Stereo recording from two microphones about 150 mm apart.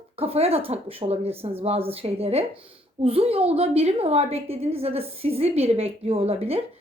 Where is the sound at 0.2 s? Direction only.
40° right (ahead or behind).